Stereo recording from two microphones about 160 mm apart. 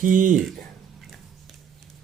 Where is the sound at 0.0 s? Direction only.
55° right (ahead or behind).